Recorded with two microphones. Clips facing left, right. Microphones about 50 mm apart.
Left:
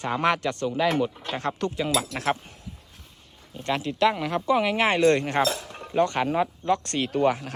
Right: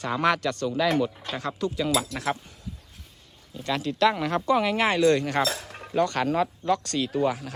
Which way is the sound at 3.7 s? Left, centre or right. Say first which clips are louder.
Even; left.